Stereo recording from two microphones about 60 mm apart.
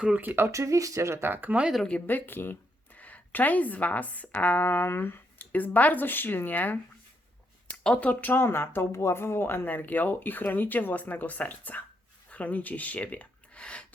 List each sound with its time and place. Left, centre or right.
0.2 s speech: right
0.4 s speech: right
1.2 s speech: right
2.0 s speech: left
5.4 s speech: left
8.0 s speech: left
8.3 s speech: left
9.6 s speech: left